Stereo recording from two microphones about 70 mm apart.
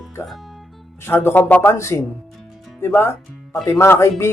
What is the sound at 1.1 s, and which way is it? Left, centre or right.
Speech, left.